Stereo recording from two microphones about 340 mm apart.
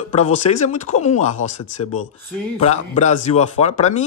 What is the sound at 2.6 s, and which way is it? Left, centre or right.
A man's voice, centre.